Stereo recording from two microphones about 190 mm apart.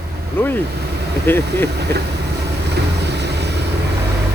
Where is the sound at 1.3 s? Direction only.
10° left (ahead or behind).